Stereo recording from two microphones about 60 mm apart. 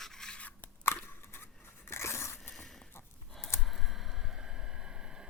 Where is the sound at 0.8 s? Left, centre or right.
Left.